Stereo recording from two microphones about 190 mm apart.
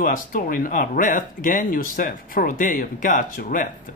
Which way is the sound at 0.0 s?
45° left (ahead or behind).